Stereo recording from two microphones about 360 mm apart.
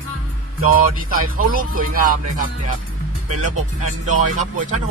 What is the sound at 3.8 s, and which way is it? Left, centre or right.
Music, right.